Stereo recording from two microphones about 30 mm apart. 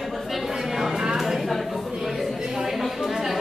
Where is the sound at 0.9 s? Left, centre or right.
Right.